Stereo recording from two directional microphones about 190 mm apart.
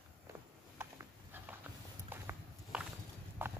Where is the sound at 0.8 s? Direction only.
15° right (ahead or behind).